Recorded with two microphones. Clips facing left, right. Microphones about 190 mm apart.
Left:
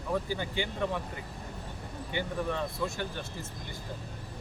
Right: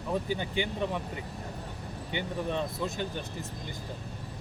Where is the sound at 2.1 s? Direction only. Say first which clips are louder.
Even; 20° right (ahead or behind).